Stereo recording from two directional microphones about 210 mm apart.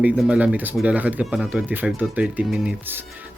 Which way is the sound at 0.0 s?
5° right (ahead or behind).